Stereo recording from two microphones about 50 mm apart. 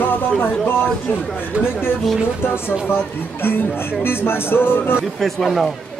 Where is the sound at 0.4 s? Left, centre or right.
Left.